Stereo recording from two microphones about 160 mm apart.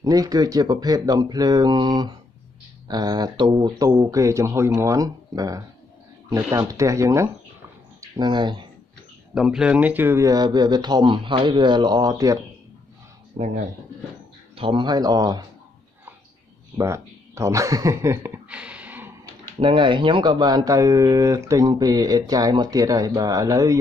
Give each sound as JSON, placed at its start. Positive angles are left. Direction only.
{"t": 0.0, "sound": "speech", "side_deg": -25}
{"t": 6.6, "sound": "speech", "side_deg": -20}
{"t": 9.3, "sound": "speech", "side_deg": -5}
{"t": 14.6, "sound": "speech", "side_deg": -35}
{"t": 16.7, "sound": "a sound", "side_deg": -20}
{"t": 19.6, "sound": "speech", "side_deg": -30}